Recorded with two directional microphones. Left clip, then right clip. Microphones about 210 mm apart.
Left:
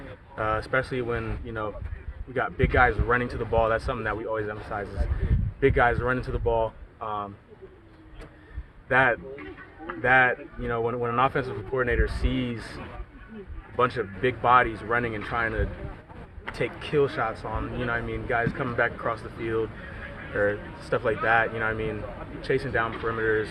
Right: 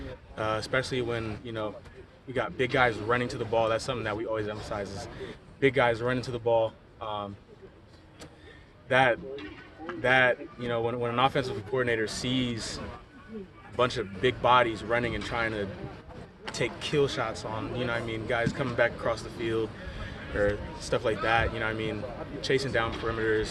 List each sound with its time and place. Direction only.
0.3 s speech: 5° right (ahead or behind)
8.9 s speech: 5° right (ahead or behind)